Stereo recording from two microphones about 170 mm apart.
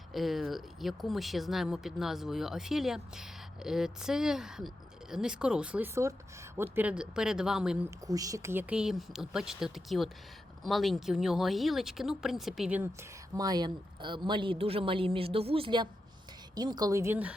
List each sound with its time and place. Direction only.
0.1 s speech: centre (ahead or behind)
7.9 s speech: 20° right (ahead or behind)